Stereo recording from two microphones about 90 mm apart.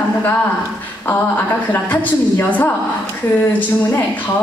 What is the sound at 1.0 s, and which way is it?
Speech, 20° left (ahead or behind).